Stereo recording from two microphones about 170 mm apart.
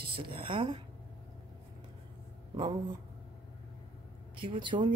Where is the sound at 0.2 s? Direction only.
30° right (ahead or behind).